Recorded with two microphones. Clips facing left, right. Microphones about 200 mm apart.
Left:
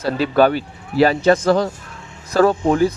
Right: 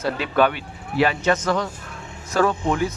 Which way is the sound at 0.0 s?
35° left (ahead or behind).